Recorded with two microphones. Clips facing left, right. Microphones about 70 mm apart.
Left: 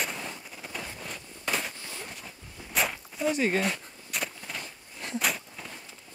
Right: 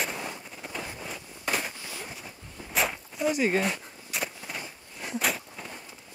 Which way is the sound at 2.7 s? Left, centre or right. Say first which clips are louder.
Right 1 dB; centre.